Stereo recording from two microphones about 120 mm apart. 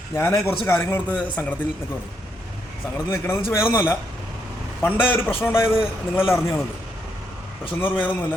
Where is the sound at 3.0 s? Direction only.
25° left (ahead or behind).